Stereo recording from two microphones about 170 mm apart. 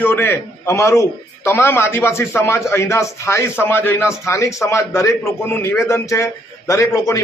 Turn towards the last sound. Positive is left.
turn(degrees=20)  # may be behind; listen again after turning